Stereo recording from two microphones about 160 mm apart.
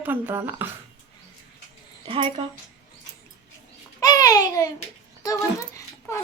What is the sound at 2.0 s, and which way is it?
Speech, 35° right (ahead or behind).